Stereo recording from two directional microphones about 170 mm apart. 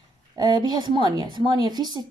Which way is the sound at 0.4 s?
25° right (ahead or behind).